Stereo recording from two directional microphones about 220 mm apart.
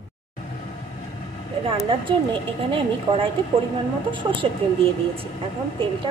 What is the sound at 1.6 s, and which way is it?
Speech, 25° right (ahead or behind).